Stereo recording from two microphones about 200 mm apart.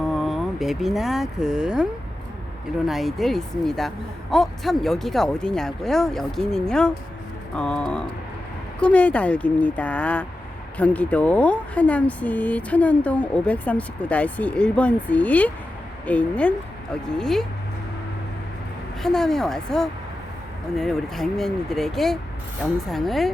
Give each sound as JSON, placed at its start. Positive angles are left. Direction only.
{"t": 0.1, "sound": "speech", "side_deg": 0}
{"t": 19.0, "sound": "speech", "side_deg": 0}